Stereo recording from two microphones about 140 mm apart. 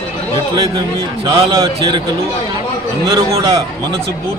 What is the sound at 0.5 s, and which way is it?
Speech, 35° right (ahead or behind).